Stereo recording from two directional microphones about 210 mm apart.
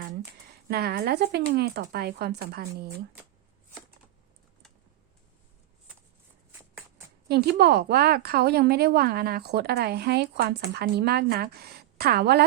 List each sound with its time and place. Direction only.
0.7 s a woman's voice: 50° right (ahead or behind)
7.3 s a woman's voice: 50° right (ahead or behind)